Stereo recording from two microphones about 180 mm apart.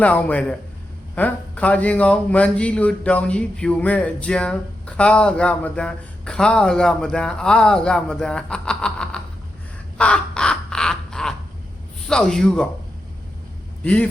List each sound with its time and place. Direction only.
0.0 s a man's voice: 10° left (ahead or behind)
10.0 s crow: 5° left (ahead or behind)
12.0 s speech: 5° left (ahead or behind)
13.8 s a man's voice: 5° left (ahead or behind)